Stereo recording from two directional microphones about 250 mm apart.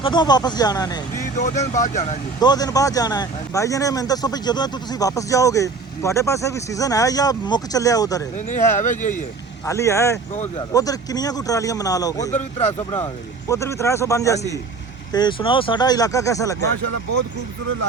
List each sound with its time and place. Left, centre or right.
0.0 s speech: centre
1.7 s speech: left
2.4 s speech: centre
8.4 s speech: left
9.6 s speech: centre
12.3 s speech: left
13.5 s speech: centre